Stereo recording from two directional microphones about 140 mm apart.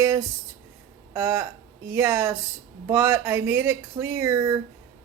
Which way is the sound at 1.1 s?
15° right (ahead or behind).